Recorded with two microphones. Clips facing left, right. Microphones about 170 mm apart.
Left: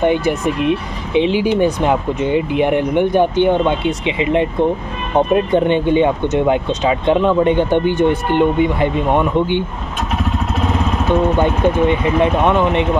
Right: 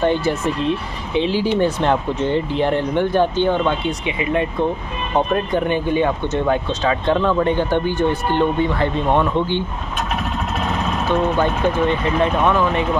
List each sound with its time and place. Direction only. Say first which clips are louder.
0.0 s speech: left 3 dB; 15° left (ahead or behind)
11.1 s speech: left 3 dB; 20° left (ahead or behind)